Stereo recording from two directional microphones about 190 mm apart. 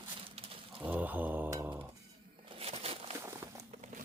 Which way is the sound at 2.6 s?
30° right (ahead or behind).